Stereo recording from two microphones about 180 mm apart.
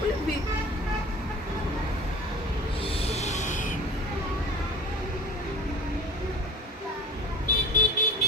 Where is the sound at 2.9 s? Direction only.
35° left (ahead or behind).